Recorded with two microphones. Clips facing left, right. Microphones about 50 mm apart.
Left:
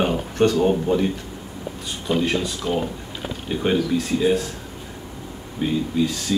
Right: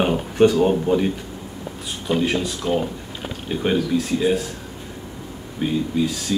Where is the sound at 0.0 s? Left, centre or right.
Centre.